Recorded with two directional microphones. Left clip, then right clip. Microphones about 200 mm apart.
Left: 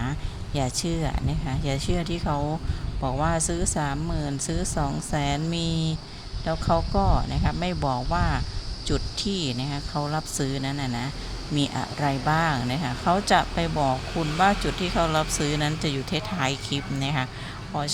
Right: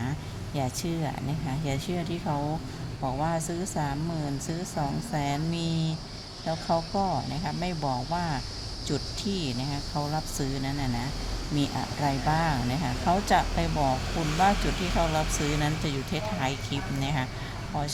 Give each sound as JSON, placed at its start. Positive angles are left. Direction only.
{"t": 0.0, "sound": "speech", "side_deg": 15}
{"t": 14.9, "sound": "speech", "side_deg": 15}